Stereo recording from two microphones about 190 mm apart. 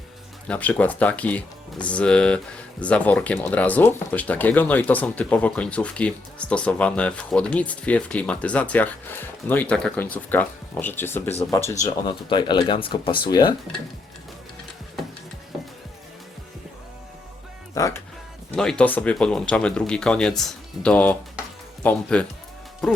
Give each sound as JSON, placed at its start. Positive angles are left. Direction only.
{"t": 0.4, "sound": "speech", "side_deg": 5}
{"t": 11.8, "sound": "speech", "side_deg": 25}
{"t": 17.7, "sound": "speech", "side_deg": 15}
{"t": 18.5, "sound": "speech", "side_deg": 5}